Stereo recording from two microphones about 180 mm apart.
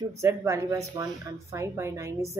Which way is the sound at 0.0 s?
15° right (ahead or behind).